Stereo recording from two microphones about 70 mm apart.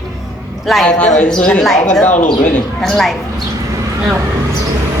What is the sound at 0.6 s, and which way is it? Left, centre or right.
Speech, centre.